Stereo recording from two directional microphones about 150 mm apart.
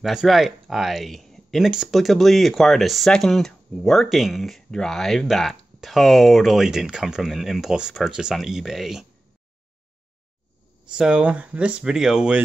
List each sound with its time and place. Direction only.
0.0 s speech: centre (ahead or behind)
10.9 s speech: 5° right (ahead or behind)